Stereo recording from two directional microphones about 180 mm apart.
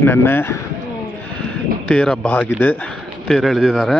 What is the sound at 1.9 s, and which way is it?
A man's voice, 5° left (ahead or behind).